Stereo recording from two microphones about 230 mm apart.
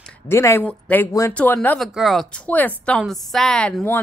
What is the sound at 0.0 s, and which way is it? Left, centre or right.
A woman's voice, centre.